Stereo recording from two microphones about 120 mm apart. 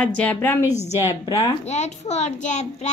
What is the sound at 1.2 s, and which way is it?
Speech, 30° left (ahead or behind).